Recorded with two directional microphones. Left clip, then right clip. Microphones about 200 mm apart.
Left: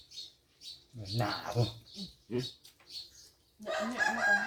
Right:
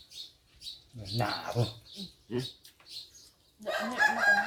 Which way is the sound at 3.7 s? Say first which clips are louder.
Right 4 dB; 60° right (ahead or behind).